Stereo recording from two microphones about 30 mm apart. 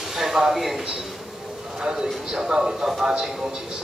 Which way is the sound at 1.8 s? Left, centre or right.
Right.